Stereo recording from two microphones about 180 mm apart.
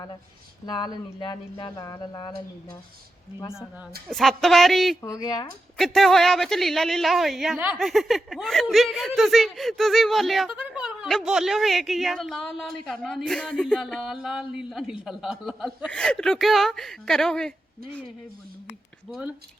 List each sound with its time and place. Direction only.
0.6 s speech: 25° left (ahead or behind)
4.1 s speech: centre (ahead or behind)
5.0 s speech: 20° left (ahead or behind)
5.7 s speech: centre (ahead or behind)